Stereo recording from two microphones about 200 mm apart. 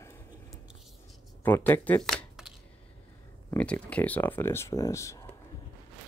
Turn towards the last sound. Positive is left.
turn(degrees=15)  # may be behind; listen again after turning